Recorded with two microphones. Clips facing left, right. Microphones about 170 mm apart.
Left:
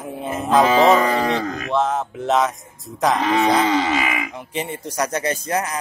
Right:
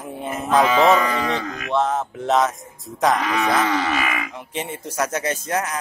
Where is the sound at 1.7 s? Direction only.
Centre (ahead or behind).